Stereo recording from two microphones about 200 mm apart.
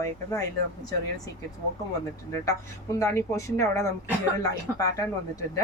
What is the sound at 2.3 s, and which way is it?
Speech, 15° left (ahead or behind).